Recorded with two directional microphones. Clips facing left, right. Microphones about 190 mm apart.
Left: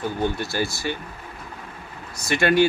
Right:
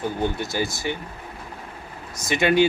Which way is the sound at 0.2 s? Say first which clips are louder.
Left 2 dB; 15° right (ahead or behind).